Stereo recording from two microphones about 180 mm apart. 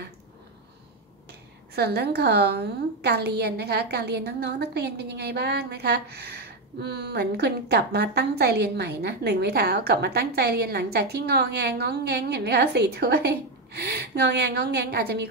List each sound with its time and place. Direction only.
1.8 s a woman's voice: 65° right (ahead or behind)